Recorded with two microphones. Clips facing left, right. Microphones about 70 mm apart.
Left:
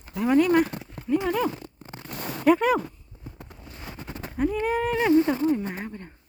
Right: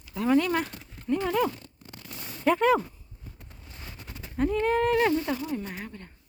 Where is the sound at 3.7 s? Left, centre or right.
Centre.